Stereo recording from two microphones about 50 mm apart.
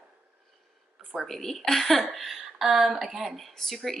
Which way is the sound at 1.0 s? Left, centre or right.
Centre.